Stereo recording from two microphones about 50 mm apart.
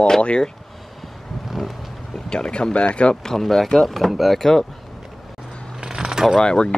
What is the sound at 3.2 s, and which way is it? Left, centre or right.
Speech, centre.